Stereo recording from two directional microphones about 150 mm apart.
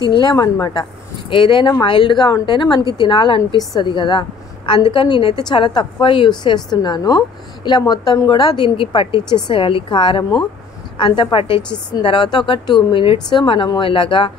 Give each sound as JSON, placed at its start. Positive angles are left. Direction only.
{"t": 0.1, "sound": "a woman's voice", "side_deg": 30}